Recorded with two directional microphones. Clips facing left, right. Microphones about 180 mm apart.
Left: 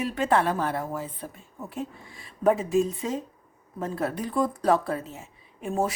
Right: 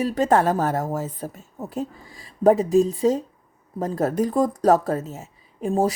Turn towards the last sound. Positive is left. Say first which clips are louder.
# right 6 dB
turn(degrees=-35)  # may be behind; listen again after turning